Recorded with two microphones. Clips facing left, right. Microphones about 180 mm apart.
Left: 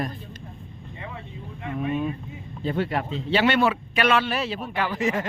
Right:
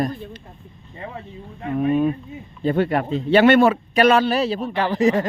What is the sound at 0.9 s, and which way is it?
Vehicle, 40° right (ahead or behind).